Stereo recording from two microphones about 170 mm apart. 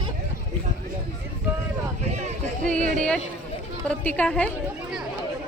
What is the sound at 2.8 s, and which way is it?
Speech, 50° right (ahead or behind).